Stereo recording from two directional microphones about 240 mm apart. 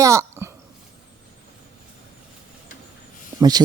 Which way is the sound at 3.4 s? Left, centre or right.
Centre.